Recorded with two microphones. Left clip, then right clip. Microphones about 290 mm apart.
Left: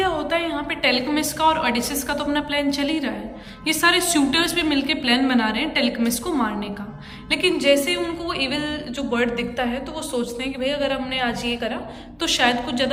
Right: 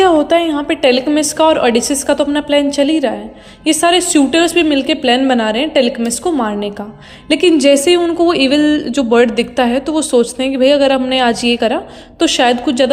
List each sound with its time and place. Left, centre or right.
0.0 s speech: centre